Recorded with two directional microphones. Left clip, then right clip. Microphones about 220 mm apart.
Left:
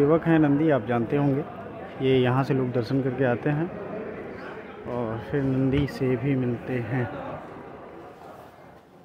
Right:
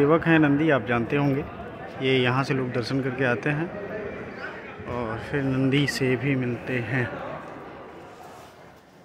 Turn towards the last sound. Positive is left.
turn(degrees=5)  # may be behind; listen again after turning